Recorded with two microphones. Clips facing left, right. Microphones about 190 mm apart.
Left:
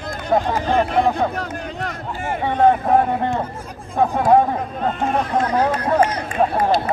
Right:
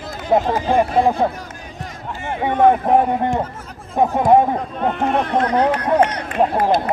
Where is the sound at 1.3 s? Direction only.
65° left (ahead or behind).